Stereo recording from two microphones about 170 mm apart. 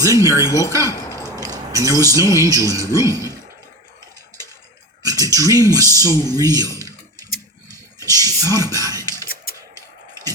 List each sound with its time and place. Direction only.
0.0 s speech: 20° right (ahead or behind)
5.0 s speech: 20° right (ahead or behind)
7.7 s a sound: 20° right (ahead or behind)